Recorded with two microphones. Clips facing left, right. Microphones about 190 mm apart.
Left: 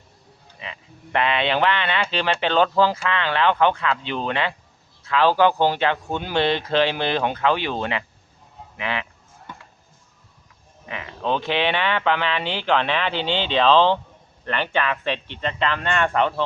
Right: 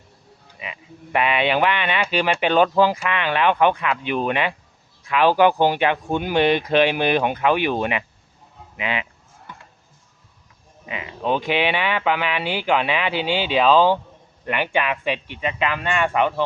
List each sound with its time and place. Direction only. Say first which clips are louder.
0.6 s speech: right 2 dB; 15° right (ahead or behind)
10.8 s speech: right 2 dB; 15° right (ahead or behind)